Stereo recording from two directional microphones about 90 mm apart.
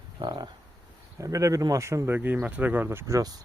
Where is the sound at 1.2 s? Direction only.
40° right (ahead or behind).